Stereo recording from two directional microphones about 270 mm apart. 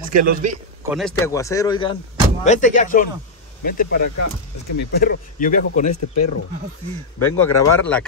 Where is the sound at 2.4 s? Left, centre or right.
Left.